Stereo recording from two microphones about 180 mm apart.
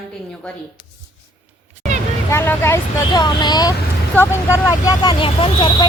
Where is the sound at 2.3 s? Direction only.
15° left (ahead or behind).